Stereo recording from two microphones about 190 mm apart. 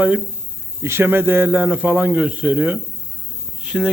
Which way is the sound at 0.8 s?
15° right (ahead or behind).